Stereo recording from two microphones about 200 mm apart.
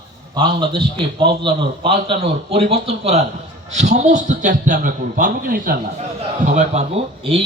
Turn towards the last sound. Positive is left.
turn(degrees=-30)  # may be behind; listen again after turning